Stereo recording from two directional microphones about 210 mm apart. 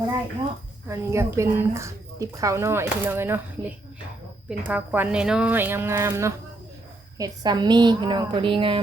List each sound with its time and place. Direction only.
0.9 s a woman's voice: 15° right (ahead or behind)